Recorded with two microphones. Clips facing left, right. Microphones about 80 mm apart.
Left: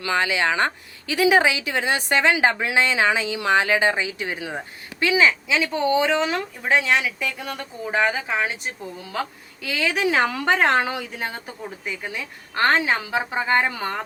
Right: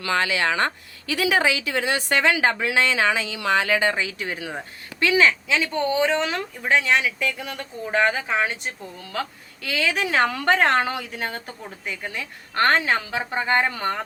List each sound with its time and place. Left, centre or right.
0.0 s a woman's voice: left